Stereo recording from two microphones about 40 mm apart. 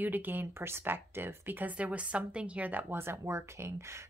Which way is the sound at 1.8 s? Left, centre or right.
Right.